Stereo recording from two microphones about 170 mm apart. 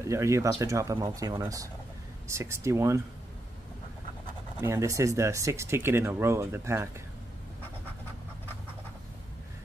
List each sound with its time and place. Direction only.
0.0 s speech: 15° right (ahead or behind)
4.6 s speech: 20° right (ahead or behind)